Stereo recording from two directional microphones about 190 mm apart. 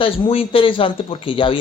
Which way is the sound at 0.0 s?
30° left (ahead or behind).